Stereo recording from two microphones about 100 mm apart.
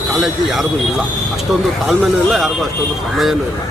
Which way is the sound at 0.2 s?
Centre (ahead or behind).